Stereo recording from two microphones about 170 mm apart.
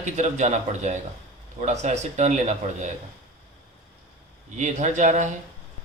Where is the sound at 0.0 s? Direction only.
45° right (ahead or behind).